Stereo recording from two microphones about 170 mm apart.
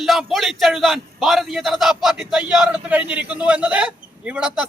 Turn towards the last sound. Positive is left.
turn(degrees=-5)  # may be behind; listen again after turning